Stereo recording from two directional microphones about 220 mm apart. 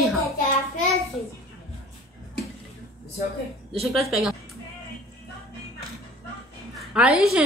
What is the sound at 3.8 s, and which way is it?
Speech, centre (ahead or behind).